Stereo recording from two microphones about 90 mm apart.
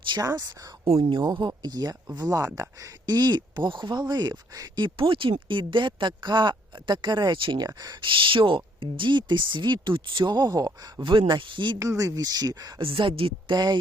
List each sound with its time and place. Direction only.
0.2 s speech: 45° right (ahead or behind)
0.9 s speech: 90° right
1.2 s speech: 50° right (ahead or behind)
4.9 s speech: 80° right; by 7.3 s 50° right (ahead or behind)
7.3 s speech: 70° right (ahead or behind)
7.6 s speech: 45° right (ahead or behind)
8.0 s speech: 75° right (ahead or behind); by 10.7 s 50° right (ahead or behind)
11.0 s speech: 65° right (ahead or behind)
11.8 s speech: 40° right (ahead or behind)
12.8 s speech: 80° right